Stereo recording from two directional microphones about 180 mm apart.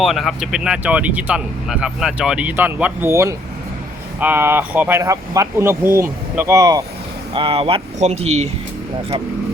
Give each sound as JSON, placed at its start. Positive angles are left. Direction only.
{"t": 0.0, "sound": "speech", "side_deg": 0}
{"t": 7.3, "sound": "speech", "side_deg": -30}